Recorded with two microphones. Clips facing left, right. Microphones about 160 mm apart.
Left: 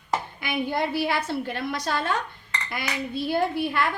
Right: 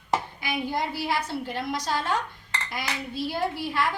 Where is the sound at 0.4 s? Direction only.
60° left (ahead or behind).